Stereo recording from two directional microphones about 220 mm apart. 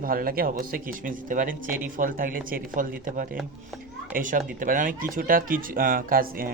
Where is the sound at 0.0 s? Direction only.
40° right (ahead or behind).